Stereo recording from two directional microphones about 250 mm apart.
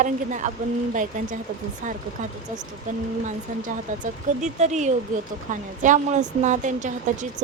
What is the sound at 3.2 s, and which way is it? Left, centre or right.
A woman's voice, right.